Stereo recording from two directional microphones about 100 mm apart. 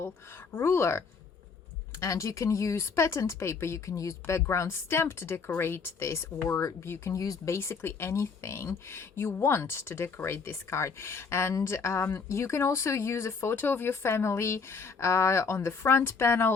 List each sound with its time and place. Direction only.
0.5 s speech: 25° left (ahead or behind)